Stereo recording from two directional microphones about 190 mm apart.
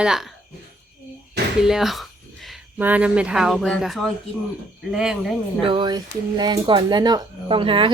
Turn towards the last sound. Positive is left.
turn(degrees=-25)  # may be behind; listen again after turning